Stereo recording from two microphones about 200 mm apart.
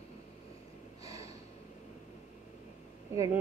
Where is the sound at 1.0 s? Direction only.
15° right (ahead or behind).